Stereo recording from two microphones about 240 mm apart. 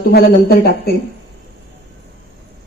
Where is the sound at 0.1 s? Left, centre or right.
Left.